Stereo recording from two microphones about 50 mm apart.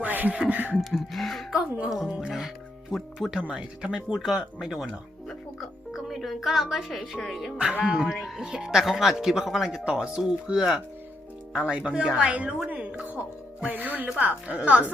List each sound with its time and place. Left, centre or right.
0.0 s music: right
0.4 s a woman's voice: right
0.8 s speech: centre
2.0 s a woman's voice: right
4.4 s speech: centre
7.6 s a woman's voice: right
7.9 s a woman's voice: centre; by 12.5 s right
12.6 s a sound: right
13.7 s a woman's voice: right